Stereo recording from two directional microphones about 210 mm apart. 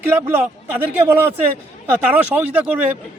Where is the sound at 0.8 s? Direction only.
10° right (ahead or behind).